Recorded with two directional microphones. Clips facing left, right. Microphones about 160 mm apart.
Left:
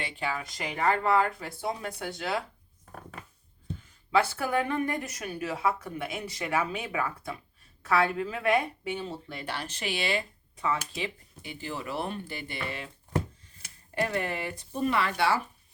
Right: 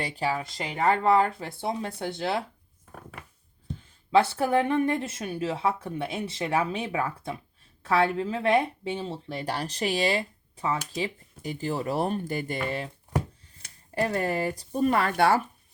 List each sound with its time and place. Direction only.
0.0 s a woman's voice: 35° right (ahead or behind)
4.4 s a woman's voice: 25° right (ahead or behind)
13.9 s speech: 40° right (ahead or behind)